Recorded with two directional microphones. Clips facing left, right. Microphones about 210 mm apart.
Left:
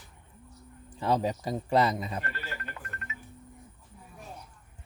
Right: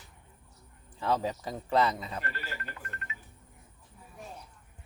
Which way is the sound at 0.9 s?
15° left (ahead or behind).